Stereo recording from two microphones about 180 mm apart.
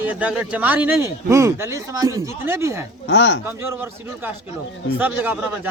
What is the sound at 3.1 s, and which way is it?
Speech, 85° left.